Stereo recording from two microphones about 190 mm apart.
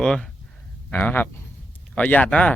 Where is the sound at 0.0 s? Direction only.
5° left (ahead or behind).